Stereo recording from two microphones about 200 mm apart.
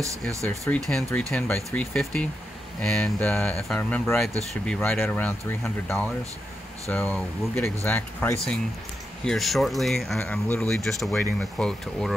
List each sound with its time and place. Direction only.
0.7 s speech: centre (ahead or behind)